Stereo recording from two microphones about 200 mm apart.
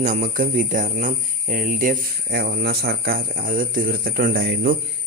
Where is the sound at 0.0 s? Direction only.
40° right (ahead or behind).